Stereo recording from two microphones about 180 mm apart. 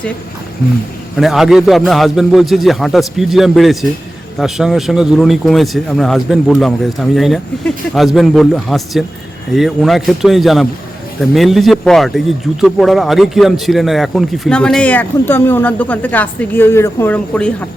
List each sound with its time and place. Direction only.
1.1 s speech: centre (ahead or behind)